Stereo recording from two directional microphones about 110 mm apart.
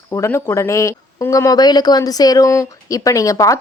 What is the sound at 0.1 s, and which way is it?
A woman's voice, 25° left (ahead or behind).